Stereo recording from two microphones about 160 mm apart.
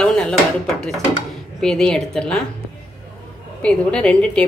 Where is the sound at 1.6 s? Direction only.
5° left (ahead or behind).